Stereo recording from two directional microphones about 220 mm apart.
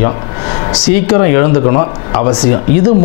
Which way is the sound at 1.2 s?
20° left (ahead or behind).